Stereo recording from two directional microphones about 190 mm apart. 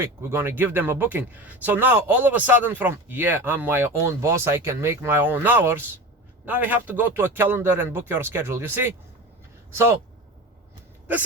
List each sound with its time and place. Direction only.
0.0 s speech: 15° right (ahead or behind)